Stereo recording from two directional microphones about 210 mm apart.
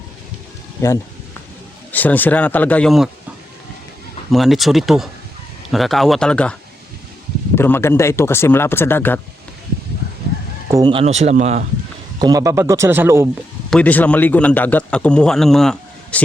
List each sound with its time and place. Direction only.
0.8 s a sound: 15° left (ahead or behind)
1.9 s speech: 10° left (ahead or behind)
4.3 s a man's voice: centre (ahead or behind)
10.7 s speech: 20° right (ahead or behind)
12.2 s speech: 15° right (ahead or behind)
13.7 s a man's voice: 5° left (ahead or behind)